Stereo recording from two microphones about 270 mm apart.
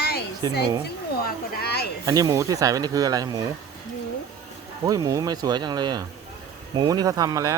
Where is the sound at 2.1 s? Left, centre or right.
Centre.